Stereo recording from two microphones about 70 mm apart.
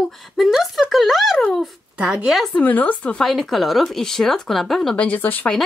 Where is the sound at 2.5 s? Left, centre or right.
Left.